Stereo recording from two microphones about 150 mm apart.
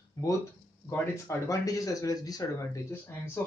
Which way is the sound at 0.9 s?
20° left (ahead or behind).